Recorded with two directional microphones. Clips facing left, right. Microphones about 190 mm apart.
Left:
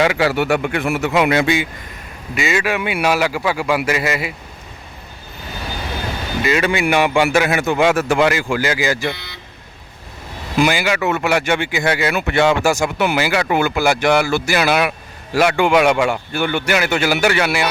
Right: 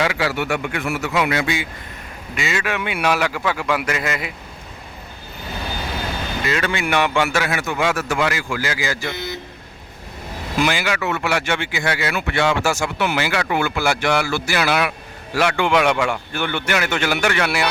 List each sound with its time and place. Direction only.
0.0 s a man's voice: 25° left (ahead or behind)
2.3 s speech: 10° left (ahead or behind)
6.4 s a man's voice: 10° left (ahead or behind)
9.1 s vehicle: 45° right (ahead or behind)
10.6 s speech: 10° left (ahead or behind)